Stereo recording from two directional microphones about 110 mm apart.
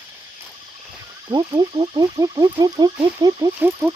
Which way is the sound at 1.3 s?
40° right (ahead or behind).